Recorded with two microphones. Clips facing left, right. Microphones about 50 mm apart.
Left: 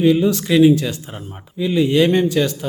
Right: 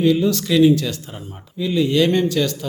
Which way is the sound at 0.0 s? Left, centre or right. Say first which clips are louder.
Left 2 dB; centre.